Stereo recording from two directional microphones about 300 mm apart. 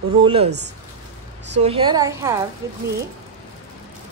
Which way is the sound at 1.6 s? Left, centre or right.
Centre.